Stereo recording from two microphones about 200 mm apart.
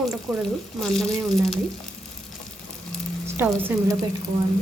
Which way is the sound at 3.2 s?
10° right (ahead or behind).